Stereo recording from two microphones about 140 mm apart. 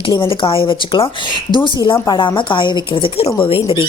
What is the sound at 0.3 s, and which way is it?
A woman's voice, 40° left (ahead or behind).